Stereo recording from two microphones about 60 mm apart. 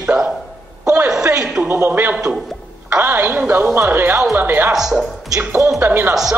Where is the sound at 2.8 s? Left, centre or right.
Right.